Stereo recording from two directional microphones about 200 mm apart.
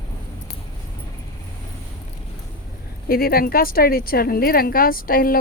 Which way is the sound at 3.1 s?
50° left (ahead or behind).